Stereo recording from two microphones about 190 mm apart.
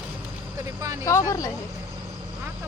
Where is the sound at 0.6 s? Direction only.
15° right (ahead or behind).